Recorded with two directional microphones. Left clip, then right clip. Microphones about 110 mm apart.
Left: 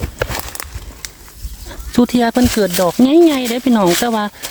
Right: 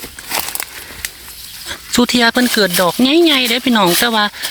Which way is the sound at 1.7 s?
25° left (ahead or behind).